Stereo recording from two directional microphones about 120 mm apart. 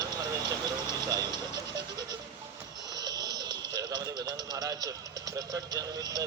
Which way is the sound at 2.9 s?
30° right (ahead or behind).